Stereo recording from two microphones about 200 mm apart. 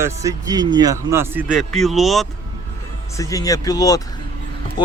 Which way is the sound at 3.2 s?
15° left (ahead or behind).